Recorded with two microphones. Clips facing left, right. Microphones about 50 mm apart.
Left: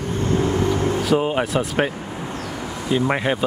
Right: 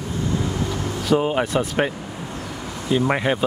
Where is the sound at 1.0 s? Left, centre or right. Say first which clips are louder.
Right 5 dB; centre.